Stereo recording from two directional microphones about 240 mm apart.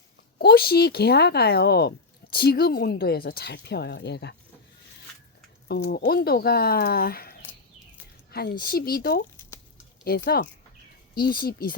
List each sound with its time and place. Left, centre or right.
0.3 s a woman's voice: left
5.6 s a woman's voice: left